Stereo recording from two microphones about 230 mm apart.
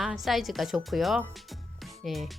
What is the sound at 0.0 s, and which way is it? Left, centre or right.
A woman's voice, centre.